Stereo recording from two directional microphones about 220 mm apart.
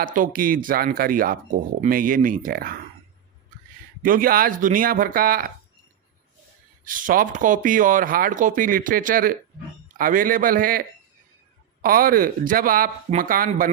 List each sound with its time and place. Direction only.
0.0 s speech: 40° right (ahead or behind)
4.0 s speech: 40° right (ahead or behind)
6.8 s speech: 40° right (ahead or behind)